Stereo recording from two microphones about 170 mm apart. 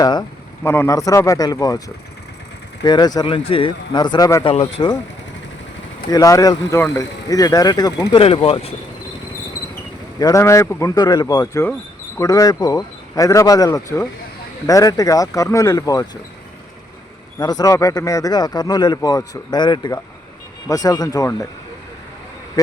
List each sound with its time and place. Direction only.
0.0 s a sound: 20° left (ahead or behind)
0.7 s speech: 15° left (ahead or behind)
2.8 s speech: 25° left (ahead or behind)
4.4 s speech: 35° left (ahead or behind)
6.1 s speech: 20° left (ahead or behind)
8.2 s speech: 35° left (ahead or behind)
10.2 s speech: 20° left (ahead or behind)
17.3 s speech: 20° left (ahead or behind)
22.6 s speech: 20° left (ahead or behind)